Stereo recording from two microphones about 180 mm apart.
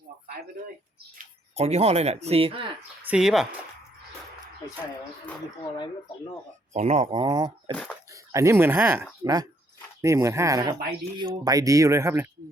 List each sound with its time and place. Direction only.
1.2 s speech: 35° right (ahead or behind)
3.1 s speech: 5° right (ahead or behind)
6.7 s speech: 40° right (ahead or behind)
7.2 s speech: 25° right (ahead or behind)